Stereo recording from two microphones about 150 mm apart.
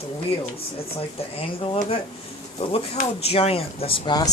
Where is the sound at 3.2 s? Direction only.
45° left (ahead or behind).